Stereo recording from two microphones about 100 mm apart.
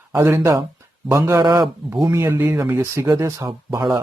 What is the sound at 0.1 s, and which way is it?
Speech, 30° right (ahead or behind).